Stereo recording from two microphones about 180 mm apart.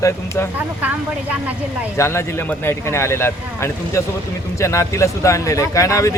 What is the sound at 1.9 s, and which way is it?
A man's voice, 15° left (ahead or behind).